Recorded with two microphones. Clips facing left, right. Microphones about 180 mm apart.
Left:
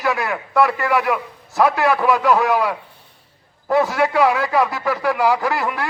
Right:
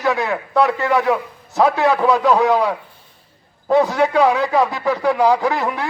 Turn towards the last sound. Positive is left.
turn(degrees=-20)  # may be behind; listen again after turning